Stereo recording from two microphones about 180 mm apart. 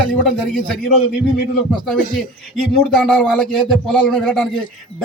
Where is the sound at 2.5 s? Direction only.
5° left (ahead or behind).